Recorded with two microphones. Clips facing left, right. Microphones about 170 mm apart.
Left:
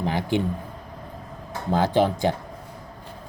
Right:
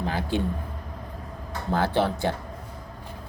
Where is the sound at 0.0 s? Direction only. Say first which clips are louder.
Left 3 dB; 20° left (ahead or behind).